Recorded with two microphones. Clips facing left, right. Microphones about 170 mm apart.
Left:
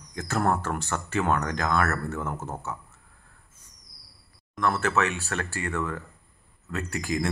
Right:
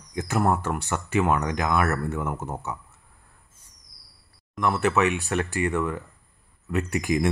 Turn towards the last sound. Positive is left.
turn(degrees=-20)  # may be behind; listen again after turning